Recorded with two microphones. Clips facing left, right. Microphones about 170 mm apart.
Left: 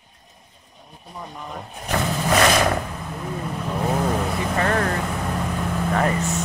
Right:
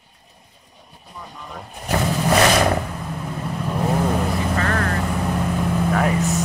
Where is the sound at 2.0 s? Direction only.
Centre (ahead or behind).